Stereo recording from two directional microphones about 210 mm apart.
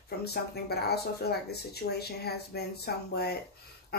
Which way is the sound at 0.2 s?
50° left (ahead or behind).